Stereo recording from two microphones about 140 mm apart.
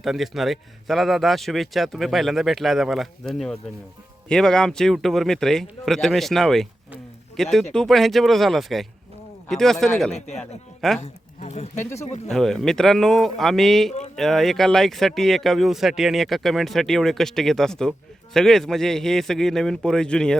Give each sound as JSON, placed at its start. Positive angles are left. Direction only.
{"t": 0.0, "sound": "speech", "side_deg": 0}
{"t": 10.1, "sound": "speech", "side_deg": 50}
{"t": 10.8, "sound": "speech", "side_deg": 0}
{"t": 11.0, "sound": "speech", "side_deg": 50}
{"t": 12.3, "sound": "speech", "side_deg": 5}